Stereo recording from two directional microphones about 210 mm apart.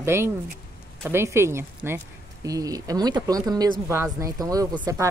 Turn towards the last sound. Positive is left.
turn(degrees=-15)  # may be behind; listen again after turning